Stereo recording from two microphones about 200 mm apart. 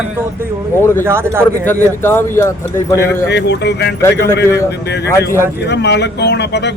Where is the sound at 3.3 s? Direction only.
55° left (ahead or behind).